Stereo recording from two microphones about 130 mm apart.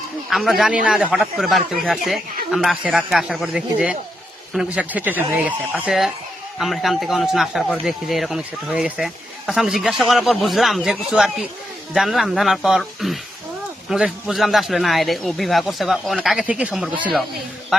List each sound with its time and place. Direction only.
0.3 s a man's voice: centre (ahead or behind)
5.9 s speech: centre (ahead or behind)